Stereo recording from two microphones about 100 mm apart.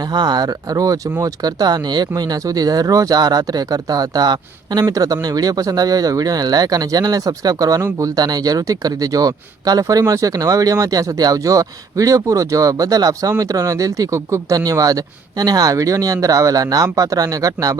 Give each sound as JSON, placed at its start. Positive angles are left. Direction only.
{"t": 0.1, "sound": "speech", "side_deg": -45}